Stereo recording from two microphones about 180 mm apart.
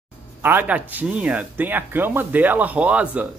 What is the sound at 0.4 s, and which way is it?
Speech, 10° right (ahead or behind).